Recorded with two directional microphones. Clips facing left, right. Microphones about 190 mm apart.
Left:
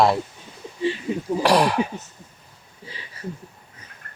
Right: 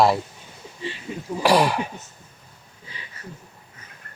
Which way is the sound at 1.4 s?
Centre (ahead or behind).